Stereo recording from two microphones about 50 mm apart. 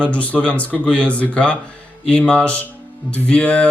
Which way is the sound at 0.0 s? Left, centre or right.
Left.